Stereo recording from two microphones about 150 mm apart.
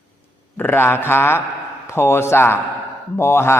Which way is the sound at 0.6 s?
15° left (ahead or behind).